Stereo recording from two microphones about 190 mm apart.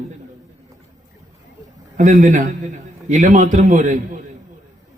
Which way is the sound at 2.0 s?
40° right (ahead or behind).